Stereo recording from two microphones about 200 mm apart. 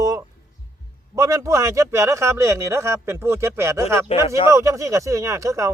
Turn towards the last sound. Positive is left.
turn(degrees=-15)  # may be behind; listen again after turning